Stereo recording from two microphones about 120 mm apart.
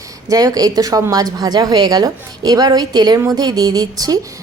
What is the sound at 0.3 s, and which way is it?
A woman's voice, 30° right (ahead or behind).